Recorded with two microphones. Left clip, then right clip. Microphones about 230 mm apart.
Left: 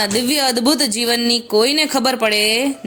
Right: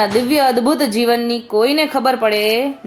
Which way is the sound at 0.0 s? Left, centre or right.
Left.